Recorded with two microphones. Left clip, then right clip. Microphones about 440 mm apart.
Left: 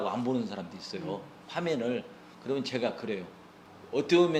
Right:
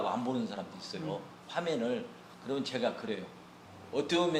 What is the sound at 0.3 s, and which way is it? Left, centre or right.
A man's voice, left.